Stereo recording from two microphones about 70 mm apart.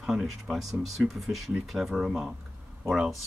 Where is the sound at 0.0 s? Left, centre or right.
Centre.